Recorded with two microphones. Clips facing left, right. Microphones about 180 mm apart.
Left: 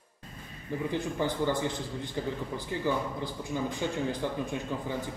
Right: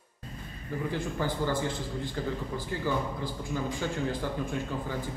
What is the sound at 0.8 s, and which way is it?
A man's voice, 20° left (ahead or behind).